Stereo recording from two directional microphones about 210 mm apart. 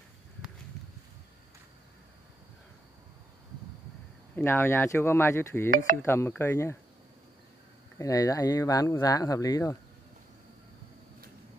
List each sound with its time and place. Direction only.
4.4 s speech: 10° left (ahead or behind)
8.0 s speech: 15° left (ahead or behind)